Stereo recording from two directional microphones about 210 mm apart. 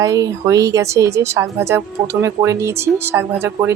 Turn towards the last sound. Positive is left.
turn(degrees=-10)  # may be behind; listen again after turning